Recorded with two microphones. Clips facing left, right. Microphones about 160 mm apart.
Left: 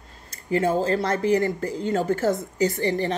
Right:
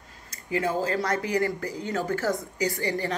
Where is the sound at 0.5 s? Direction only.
25° left (ahead or behind).